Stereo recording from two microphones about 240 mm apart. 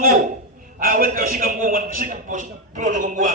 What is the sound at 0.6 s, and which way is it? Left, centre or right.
A man's voice, right.